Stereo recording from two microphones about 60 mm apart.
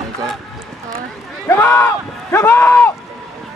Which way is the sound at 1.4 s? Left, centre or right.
Left.